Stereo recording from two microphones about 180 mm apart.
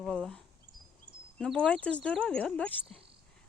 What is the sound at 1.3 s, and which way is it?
Speech, 5° left (ahead or behind).